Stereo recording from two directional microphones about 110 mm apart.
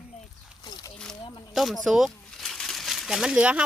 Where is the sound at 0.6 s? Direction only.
40° left (ahead or behind).